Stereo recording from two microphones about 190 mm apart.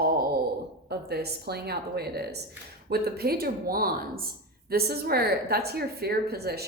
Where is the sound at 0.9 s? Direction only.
55° right (ahead or behind).